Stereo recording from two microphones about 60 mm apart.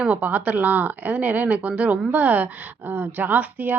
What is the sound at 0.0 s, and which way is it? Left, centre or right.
Speech, right.